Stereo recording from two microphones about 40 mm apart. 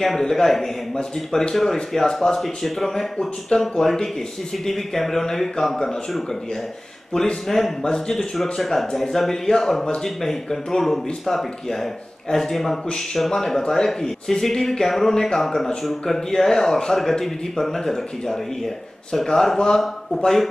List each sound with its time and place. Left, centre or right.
0.0 s speech: centre
7.4 s a man's voice: centre
7.8 s speech: centre
8.2 s a man's voice: centre
16.2 s speech: centre